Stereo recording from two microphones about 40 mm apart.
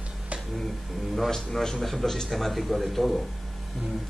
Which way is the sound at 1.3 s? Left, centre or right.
Centre.